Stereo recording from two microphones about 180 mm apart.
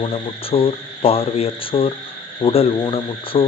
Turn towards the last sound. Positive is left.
turn(degrees=30)  # may be behind; listen again after turning